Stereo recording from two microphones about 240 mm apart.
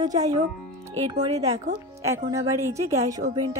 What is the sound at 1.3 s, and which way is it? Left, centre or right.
Speech, right.